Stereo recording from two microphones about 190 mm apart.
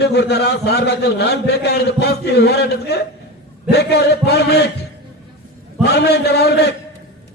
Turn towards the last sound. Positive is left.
turn(degrees=60)  # may be behind; listen again after turning